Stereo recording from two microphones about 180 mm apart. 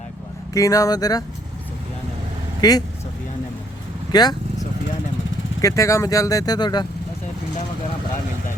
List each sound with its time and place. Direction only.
0.5 s speech: 20° left (ahead or behind)
2.6 s speech: 20° left (ahead or behind)
4.1 s vehicle: 20° left (ahead or behind)
5.5 s speech: 20° left (ahead or behind)